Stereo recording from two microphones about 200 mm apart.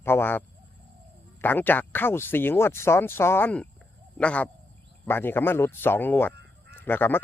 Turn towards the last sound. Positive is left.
turn(degrees=10)  # may be behind; listen again after turning